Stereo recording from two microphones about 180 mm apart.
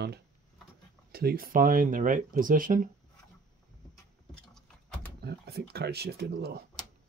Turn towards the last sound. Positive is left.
turn(degrees=-60)  # may be behind; listen again after turning